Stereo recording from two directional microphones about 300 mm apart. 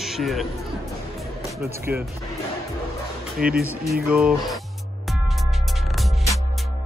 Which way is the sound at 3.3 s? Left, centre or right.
Right.